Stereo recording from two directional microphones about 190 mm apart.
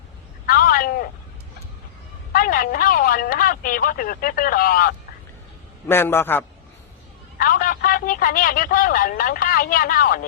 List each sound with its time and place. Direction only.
0.4 s a sound: 50° left (ahead or behind)
2.3 s speech: 50° left (ahead or behind)
5.9 s a man's voice: 10° left (ahead or behind)
7.3 s a man's voice: 50° left (ahead or behind)